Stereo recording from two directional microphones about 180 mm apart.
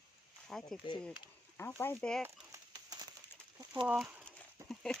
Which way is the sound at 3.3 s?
10° left (ahead or behind).